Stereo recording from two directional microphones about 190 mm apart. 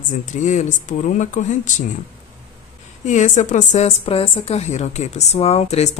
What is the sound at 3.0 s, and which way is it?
A woman's voice, 40° left (ahead or behind).